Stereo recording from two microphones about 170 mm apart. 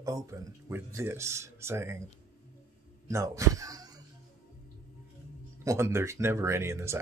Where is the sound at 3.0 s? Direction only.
20° right (ahead or behind).